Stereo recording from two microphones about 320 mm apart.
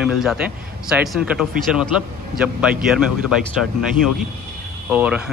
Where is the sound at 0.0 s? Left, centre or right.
Centre.